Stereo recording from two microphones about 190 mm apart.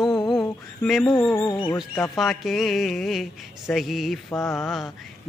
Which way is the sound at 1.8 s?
Centre (ahead or behind).